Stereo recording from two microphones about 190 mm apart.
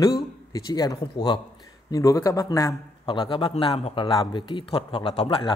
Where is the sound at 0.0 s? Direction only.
20° left (ahead or behind).